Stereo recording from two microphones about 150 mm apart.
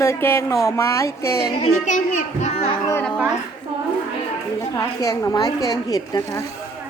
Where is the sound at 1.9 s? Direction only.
60° left (ahead or behind).